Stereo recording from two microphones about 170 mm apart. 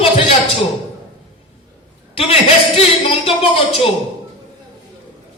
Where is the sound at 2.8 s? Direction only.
35° left (ahead or behind).